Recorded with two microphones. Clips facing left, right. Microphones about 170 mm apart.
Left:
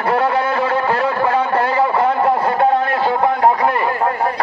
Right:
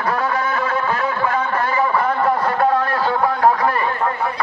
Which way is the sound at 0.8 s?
30° left (ahead or behind).